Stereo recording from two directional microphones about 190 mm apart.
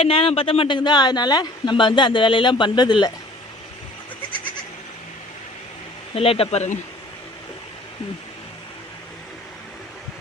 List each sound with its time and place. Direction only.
0.0 s a man's voice: 30° left (ahead or behind)
6.1 s speech: 30° left (ahead or behind)